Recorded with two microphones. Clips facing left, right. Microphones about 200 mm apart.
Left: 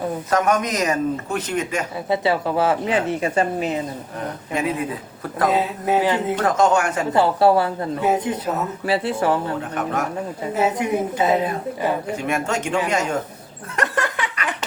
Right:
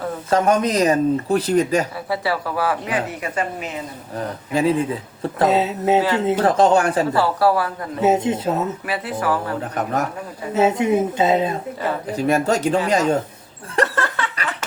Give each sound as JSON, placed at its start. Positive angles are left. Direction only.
{"t": 0.3, "sound": "speech", "side_deg": -30}
{"t": 2.0, "sound": "speech", "side_deg": 20}
{"t": 4.5, "sound": "a woman's voice", "side_deg": -30}
{"t": 6.0, "sound": "speech", "side_deg": 20}
{"t": 6.2, "sound": "speech", "side_deg": -30}
{"t": 7.1, "sound": "speech", "side_deg": 20}
{"t": 8.0, "sound": "a woman's voice", "side_deg": -25}
{"t": 8.9, "sound": "speech", "side_deg": 25}
{"t": 10.5, "sound": "a woman's voice", "side_deg": -25}
{"t": 12.1, "sound": "speech", "side_deg": -35}
{"t": 13.8, "sound": "a sound", "side_deg": 15}